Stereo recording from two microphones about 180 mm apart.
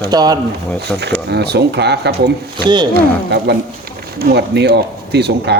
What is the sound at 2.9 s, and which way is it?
Speech, 65° right (ahead or behind).